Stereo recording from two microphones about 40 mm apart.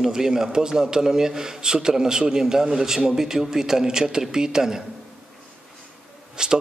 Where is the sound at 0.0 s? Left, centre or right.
Centre.